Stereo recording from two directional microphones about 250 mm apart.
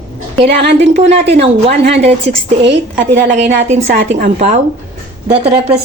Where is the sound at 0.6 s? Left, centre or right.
Right.